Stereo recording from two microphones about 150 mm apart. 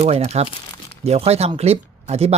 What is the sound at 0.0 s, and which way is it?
Speech, 45° right (ahead or behind).